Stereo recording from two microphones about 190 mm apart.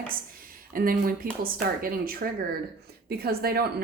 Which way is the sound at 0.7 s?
50° right (ahead or behind).